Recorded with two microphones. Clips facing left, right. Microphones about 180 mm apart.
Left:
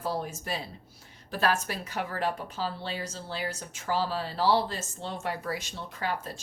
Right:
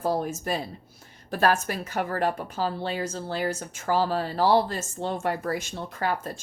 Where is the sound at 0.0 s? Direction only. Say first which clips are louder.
Right 6 dB; 45° right (ahead or behind).